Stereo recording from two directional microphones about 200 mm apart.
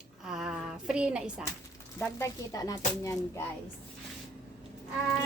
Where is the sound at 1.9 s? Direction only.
10° left (ahead or behind).